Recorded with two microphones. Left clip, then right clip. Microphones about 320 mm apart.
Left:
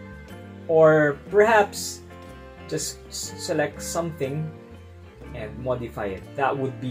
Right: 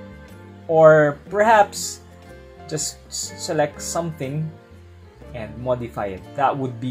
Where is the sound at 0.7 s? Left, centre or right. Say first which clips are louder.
Right 4 dB; right.